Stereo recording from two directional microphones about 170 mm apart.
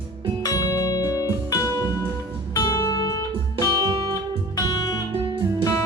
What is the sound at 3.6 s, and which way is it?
Music, 20° right (ahead or behind).